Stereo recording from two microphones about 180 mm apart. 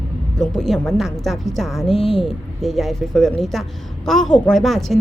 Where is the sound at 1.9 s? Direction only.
30° left (ahead or behind).